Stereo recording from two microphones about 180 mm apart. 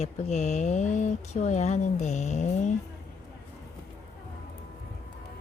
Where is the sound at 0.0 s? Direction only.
40° left (ahead or behind).